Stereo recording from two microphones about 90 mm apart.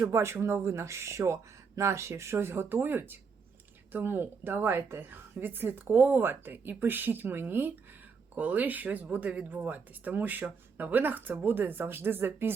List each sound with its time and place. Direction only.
0.1 s a woman's voice: 30° right (ahead or behind)